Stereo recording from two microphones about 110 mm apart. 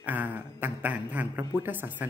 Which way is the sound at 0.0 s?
15° right (ahead or behind).